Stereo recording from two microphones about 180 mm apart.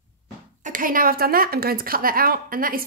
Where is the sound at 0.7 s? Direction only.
50° right (ahead or behind).